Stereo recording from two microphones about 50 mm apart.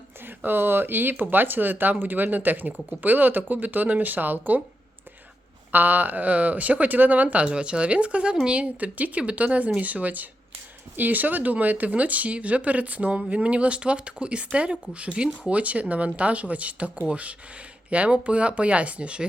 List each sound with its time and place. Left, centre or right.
0.3 s speech: right
5.7 s speech: right
7.4 s speech: right